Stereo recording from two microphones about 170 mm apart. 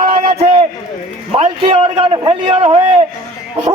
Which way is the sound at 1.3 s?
35° right (ahead or behind).